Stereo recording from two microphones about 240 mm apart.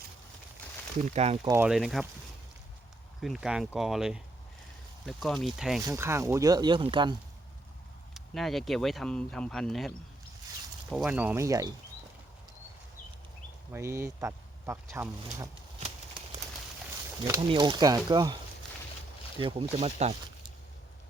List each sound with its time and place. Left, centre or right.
1.0 s speech: right
1.5 s speech: centre
3.2 s speech: centre
5.8 s speech: centre
8.1 s speech: centre
13.7 s speech: centre
17.2 s speech: centre
19.4 s speech: right